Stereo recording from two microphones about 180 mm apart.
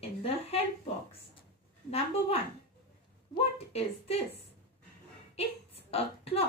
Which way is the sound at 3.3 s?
35° left (ahead or behind).